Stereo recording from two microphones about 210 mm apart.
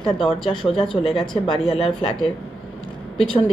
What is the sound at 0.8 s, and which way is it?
Speech, 25° left (ahead or behind).